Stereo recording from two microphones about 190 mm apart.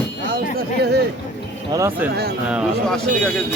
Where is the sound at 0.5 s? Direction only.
60° right (ahead or behind).